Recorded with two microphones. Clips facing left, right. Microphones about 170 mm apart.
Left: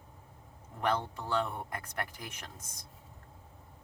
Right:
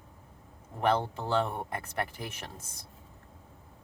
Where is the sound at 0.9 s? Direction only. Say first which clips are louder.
Right 4 dB; 30° right (ahead or behind).